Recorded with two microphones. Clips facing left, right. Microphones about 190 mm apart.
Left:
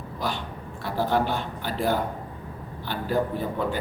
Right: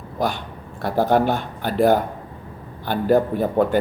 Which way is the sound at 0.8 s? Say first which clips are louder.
Right 6 dB; 50° right (ahead or behind).